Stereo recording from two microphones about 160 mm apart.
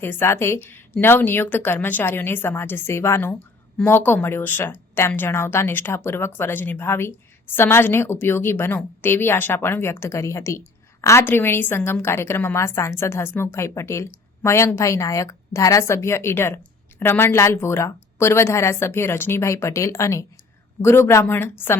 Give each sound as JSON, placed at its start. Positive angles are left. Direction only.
{"t": 0.0, "sound": "speech", "side_deg": 15}